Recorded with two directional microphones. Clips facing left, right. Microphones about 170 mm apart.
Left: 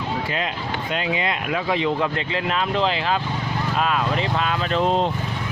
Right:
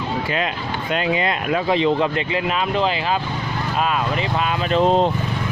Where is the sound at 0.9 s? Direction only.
50° right (ahead or behind); by 2.0 s 30° right (ahead or behind).